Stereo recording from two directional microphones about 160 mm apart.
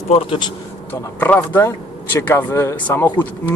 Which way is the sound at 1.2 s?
10° left (ahead or behind).